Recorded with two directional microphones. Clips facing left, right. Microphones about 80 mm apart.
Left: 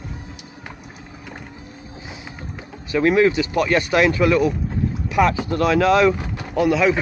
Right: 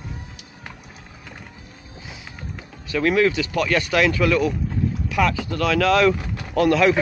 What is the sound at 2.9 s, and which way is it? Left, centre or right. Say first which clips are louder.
Speech: left 3 dB; left.